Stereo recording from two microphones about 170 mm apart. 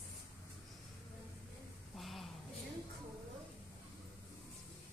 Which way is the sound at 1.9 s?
Centre (ahead or behind).